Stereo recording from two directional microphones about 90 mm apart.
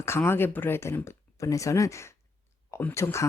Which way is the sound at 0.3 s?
25° left (ahead or behind).